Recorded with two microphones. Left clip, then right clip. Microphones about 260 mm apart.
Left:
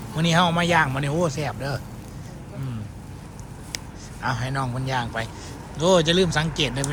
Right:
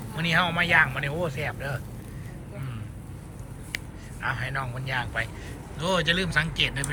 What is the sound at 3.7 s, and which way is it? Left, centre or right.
A man's voice, centre.